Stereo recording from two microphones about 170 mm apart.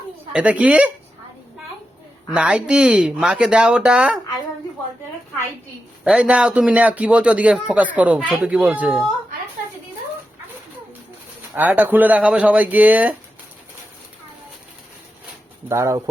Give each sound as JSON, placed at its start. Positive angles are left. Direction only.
{"t": 0.3, "sound": "a man's voice", "side_deg": -10}
{"t": 2.3, "sound": "speech", "side_deg": -5}
{"t": 6.1, "sound": "a man's voice", "side_deg": -5}
{"t": 11.5, "sound": "a man's voice", "side_deg": -10}
{"t": 15.7, "sound": "a man's voice", "side_deg": -15}